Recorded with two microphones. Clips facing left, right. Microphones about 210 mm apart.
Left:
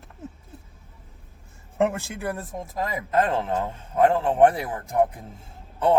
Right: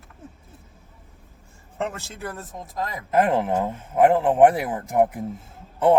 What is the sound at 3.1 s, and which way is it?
Speech, 20° right (ahead or behind).